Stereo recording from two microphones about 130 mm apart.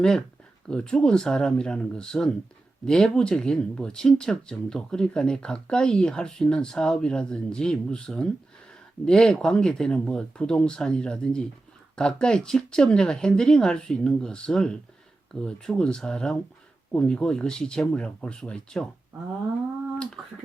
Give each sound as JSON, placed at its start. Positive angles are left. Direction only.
{"t": 0.7, "sound": "speech", "side_deg": 5}